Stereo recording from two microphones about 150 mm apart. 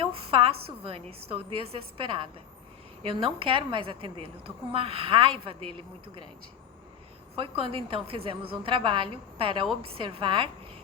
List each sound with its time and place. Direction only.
0.0 s a sound: 40° right (ahead or behind)
0.9 s a woman's voice: 40° right (ahead or behind)
3.0 s a woman's voice: 35° right (ahead or behind)
7.3 s a woman's voice: 35° right (ahead or behind)